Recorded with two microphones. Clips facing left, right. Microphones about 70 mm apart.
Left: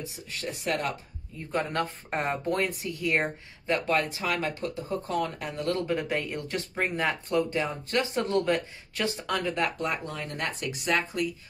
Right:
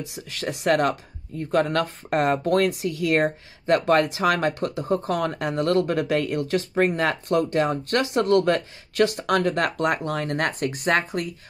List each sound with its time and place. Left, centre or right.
0.0 s speech: right